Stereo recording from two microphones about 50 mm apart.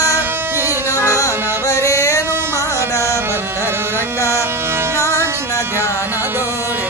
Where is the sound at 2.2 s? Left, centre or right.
Right.